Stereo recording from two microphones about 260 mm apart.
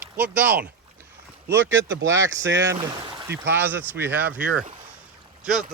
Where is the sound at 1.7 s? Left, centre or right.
Right.